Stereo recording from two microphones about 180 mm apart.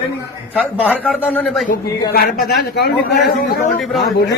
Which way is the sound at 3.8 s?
Centre (ahead or behind).